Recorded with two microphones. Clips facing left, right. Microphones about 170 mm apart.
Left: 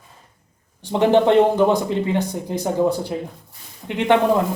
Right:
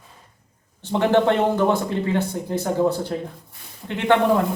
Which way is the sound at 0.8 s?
15° left (ahead or behind).